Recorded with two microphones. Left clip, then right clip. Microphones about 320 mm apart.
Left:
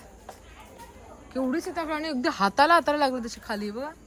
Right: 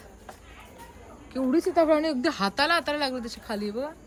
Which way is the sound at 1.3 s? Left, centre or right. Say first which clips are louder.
Right 4 dB; centre.